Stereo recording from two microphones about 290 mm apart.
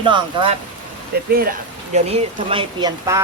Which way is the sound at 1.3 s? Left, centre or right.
Right.